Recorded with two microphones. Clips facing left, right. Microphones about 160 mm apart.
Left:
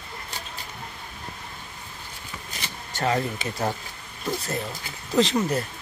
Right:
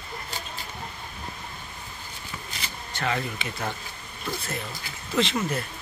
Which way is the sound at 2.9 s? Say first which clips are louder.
Left 4 dB; 40° left (ahead or behind).